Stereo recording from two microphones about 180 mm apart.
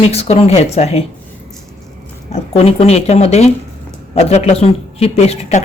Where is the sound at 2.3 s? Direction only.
35° left (ahead or behind).